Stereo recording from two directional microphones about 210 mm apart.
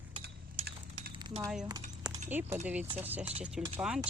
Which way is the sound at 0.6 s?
25° right (ahead or behind).